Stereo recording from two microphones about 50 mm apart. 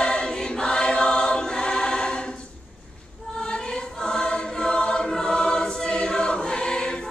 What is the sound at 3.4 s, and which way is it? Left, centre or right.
Choir, centre.